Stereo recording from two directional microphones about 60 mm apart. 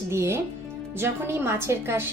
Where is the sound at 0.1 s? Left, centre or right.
Right.